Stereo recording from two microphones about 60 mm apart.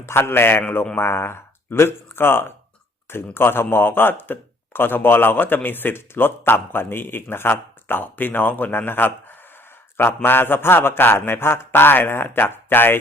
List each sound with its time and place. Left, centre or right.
0.0 s speech: left